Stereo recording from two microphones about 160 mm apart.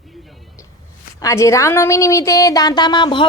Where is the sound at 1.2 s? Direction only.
20° left (ahead or behind).